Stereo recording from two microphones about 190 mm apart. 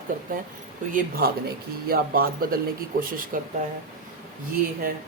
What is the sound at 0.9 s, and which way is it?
Speech, 50° right (ahead or behind).